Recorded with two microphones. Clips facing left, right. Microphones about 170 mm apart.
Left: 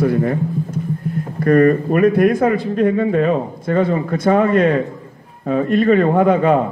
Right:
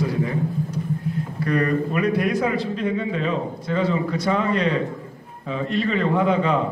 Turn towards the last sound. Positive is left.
turn(degrees=50)  # may be behind; listen again after turning